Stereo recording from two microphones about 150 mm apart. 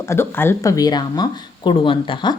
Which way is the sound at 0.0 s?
15° left (ahead or behind).